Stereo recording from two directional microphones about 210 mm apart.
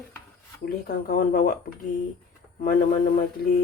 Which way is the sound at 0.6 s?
45° left (ahead or behind).